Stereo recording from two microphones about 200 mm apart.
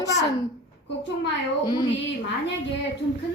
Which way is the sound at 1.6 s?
20° left (ahead or behind).